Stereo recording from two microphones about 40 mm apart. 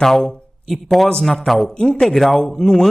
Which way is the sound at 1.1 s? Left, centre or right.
Centre.